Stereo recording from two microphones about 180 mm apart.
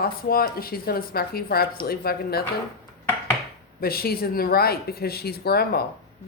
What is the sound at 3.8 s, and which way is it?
Speech, 55° left (ahead or behind).